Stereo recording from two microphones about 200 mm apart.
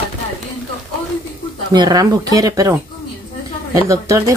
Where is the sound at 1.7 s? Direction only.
20° right (ahead or behind).